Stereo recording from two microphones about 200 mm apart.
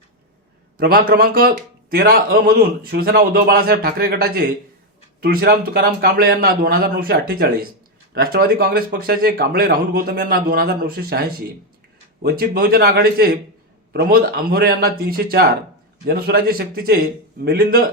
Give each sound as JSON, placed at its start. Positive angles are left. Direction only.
{"t": 0.8, "sound": "speech", "side_deg": -50}
{"t": 12.2, "sound": "speech", "side_deg": -50}